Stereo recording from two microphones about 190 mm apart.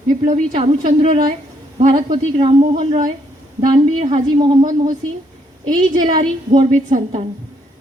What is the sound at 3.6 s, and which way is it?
Speech, 25° right (ahead or behind).